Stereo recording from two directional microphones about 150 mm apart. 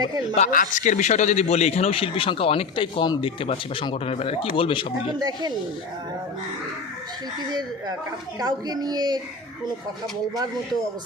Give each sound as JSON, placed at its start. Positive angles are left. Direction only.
{"t": 0.3, "sound": "speech", "side_deg": 55}
{"t": 8.4, "sound": "speech", "side_deg": -25}